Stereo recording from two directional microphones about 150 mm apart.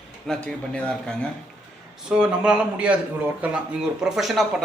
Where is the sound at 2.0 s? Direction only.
5° right (ahead or behind).